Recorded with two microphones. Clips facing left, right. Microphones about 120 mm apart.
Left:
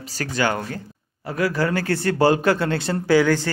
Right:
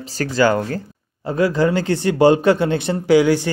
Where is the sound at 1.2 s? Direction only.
25° right (ahead or behind).